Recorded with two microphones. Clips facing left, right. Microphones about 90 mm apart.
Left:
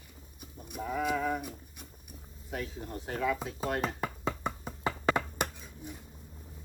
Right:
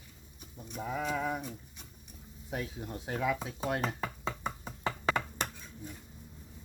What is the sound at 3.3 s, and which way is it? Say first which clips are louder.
Speech: left 1 dB; centre (ahead or behind).